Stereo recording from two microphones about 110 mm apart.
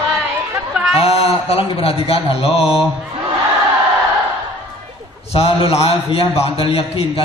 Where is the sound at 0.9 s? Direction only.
65° left (ahead or behind).